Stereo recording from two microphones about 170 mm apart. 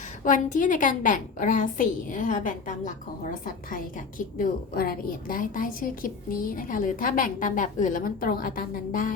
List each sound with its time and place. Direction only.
0.3 s a woman's voice: 50° left (ahead or behind)